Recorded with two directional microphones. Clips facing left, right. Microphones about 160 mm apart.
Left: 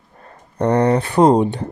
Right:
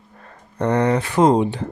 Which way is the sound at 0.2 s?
35° left (ahead or behind).